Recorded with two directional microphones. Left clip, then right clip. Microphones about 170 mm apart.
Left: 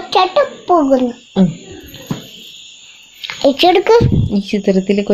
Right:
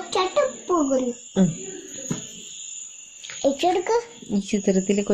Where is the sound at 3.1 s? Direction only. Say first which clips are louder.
Left 10 dB; 55° left (ahead or behind).